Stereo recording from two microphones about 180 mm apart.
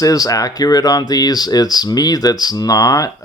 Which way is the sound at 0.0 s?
20° left (ahead or behind).